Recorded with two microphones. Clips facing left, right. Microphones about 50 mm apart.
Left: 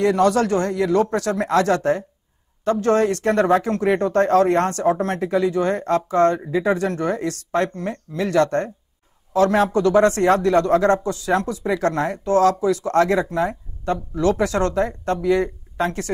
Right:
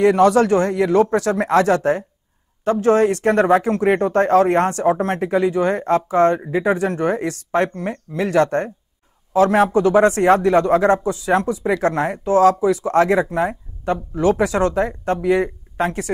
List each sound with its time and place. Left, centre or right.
0.0 s speech: right